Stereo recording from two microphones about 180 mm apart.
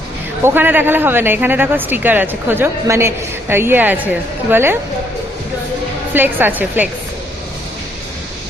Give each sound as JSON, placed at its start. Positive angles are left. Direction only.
{"t": 0.4, "sound": "speech", "side_deg": -10}
{"t": 6.1, "sound": "speech", "side_deg": -10}